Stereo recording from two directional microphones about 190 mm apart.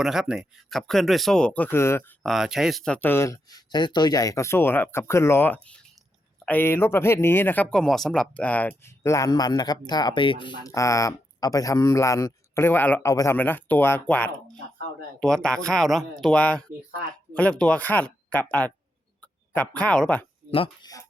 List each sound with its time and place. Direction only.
0.0 s speech: centre (ahead or behind)
2.2 s speech: centre (ahead or behind)
20.5 s speech: 25° left (ahead or behind)